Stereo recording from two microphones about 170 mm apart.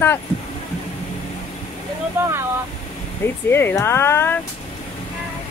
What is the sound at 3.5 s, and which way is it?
Speech, 15° left (ahead or behind).